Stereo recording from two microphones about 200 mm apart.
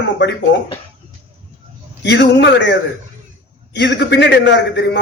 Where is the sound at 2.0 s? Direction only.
60° left (ahead or behind).